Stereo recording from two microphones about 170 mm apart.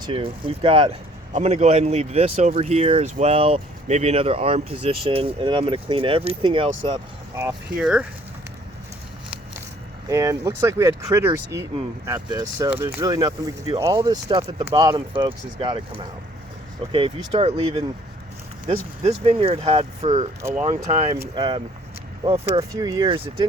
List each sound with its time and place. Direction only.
0.0 s speech: 30° right (ahead or behind)
1.3 s speech: 45° right (ahead or behind)
7.8 s speech: 5° right (ahead or behind)
10.1 s speech: 20° right (ahead or behind)
14.4 s speech: 40° right (ahead or behind)
14.8 s speech: 20° right (ahead or behind)
16.8 s speech: 30° right (ahead or behind)
19.0 s speech: 35° right (ahead or behind)
20.4 s speech: 10° right (ahead or behind)
20.7 s speech: 40° right (ahead or behind)
21.2 s speech: 25° right (ahead or behind)
22.8 s speech: 25° right (ahead or behind)